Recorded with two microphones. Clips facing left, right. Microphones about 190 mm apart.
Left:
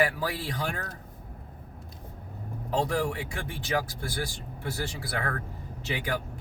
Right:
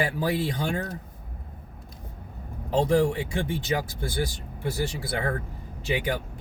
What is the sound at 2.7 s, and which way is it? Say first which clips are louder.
Speech: right 6 dB; 25° right (ahead or behind).